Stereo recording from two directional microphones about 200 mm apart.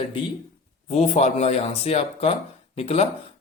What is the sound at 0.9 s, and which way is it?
A man's voice, 35° left (ahead or behind).